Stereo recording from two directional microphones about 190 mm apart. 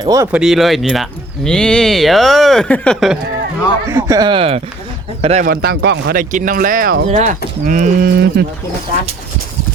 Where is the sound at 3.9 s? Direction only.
15° right (ahead or behind); by 5.4 s 35° right (ahead or behind).